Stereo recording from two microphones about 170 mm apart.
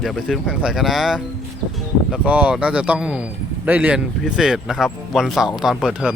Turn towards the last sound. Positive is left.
turn(degrees=-5)  # may be behind; listen again after turning